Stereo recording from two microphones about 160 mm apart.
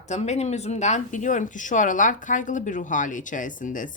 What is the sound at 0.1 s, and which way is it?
Speech, 45° left (ahead or behind).